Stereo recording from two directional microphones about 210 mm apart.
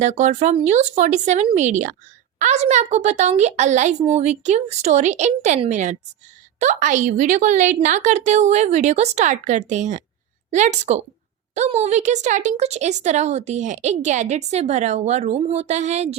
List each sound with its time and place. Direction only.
0.0 s a woman's voice: 35° right (ahead or behind)